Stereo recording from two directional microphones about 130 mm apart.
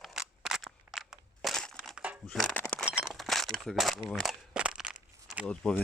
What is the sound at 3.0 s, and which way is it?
Walk, centre (ahead or behind).